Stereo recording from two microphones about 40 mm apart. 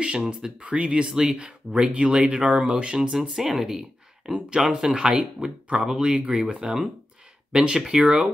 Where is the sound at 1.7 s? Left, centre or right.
Right.